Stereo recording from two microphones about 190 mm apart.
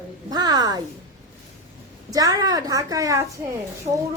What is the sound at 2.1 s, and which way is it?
A woman's voice, 20° right (ahead or behind).